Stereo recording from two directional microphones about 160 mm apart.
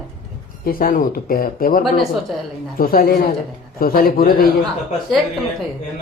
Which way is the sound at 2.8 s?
65° left (ahead or behind).